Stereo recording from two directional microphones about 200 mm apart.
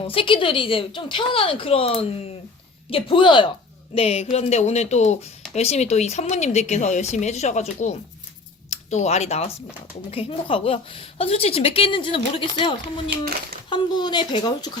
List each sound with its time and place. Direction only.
0.1 s a woman's voice: 25° left (ahead or behind)
13.1 s speech: 50° right (ahead or behind)
13.7 s a woman's voice: 20° left (ahead or behind)